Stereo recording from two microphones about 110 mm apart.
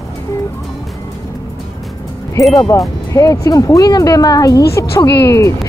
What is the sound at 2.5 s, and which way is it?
Speech, 30° left (ahead or behind).